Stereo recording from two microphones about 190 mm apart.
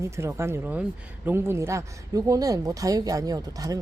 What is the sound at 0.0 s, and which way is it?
Speech, 15° right (ahead or behind).